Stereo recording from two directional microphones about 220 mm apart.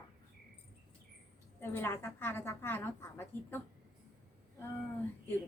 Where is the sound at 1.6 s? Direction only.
10° left (ahead or behind).